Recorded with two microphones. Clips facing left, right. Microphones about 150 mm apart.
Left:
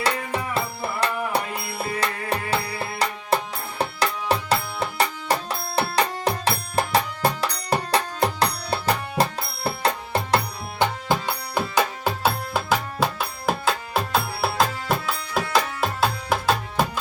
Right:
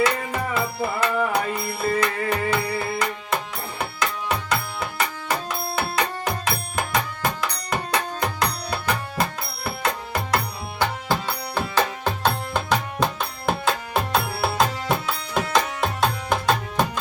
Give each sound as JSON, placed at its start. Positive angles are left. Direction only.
{"t": 0.0, "sound": "music", "side_deg": 35}
{"t": 11.1, "sound": "music", "side_deg": 15}